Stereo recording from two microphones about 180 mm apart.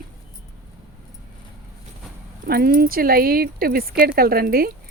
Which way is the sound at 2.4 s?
55° right (ahead or behind).